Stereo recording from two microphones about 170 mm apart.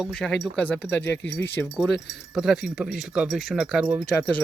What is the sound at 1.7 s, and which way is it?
Speech, centre (ahead or behind).